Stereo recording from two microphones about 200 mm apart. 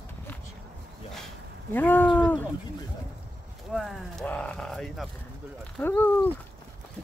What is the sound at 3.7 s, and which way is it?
Speech, centre (ahead or behind).